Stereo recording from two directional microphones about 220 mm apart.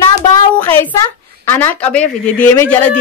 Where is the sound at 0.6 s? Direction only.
10° left (ahead or behind).